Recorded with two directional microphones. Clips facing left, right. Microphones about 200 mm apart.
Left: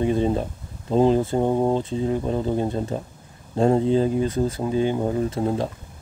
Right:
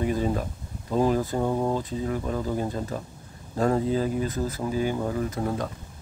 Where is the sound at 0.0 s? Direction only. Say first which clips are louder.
Left 4 dB; 25° left (ahead or behind).